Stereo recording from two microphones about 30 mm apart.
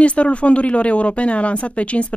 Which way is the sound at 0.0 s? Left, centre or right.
Left.